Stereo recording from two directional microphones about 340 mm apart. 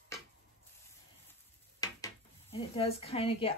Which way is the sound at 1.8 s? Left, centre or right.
Centre.